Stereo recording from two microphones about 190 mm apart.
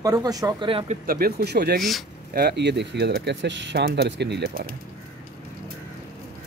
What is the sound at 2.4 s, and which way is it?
Speech, 60° right (ahead or behind).